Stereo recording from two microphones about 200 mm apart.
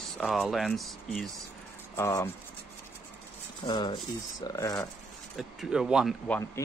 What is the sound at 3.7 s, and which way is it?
Speech, 25° left (ahead or behind).